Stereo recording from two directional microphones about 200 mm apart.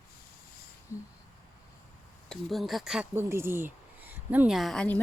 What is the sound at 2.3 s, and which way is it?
Speech, centre (ahead or behind).